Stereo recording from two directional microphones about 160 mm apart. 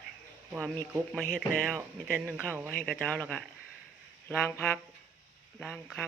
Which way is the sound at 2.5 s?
10° left (ahead or behind).